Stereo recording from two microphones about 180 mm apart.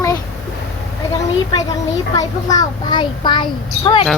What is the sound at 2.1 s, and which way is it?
A child's voice, 20° left (ahead or behind).